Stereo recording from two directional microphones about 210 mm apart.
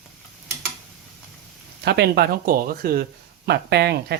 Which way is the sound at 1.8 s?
50° right (ahead or behind).